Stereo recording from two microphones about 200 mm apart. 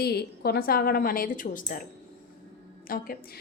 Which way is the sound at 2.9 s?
45° left (ahead or behind).